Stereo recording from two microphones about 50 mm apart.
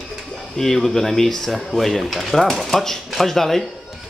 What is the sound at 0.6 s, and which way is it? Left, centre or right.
Speech, centre.